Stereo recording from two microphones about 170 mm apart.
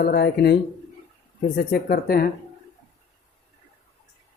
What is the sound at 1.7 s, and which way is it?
Speech, 60° left (ahead or behind).